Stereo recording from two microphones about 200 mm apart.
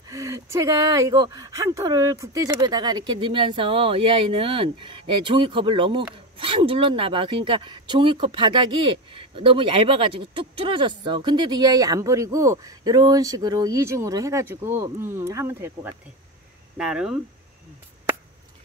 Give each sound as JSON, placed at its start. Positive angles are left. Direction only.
{"t": 0.1, "sound": "speech", "side_deg": -15}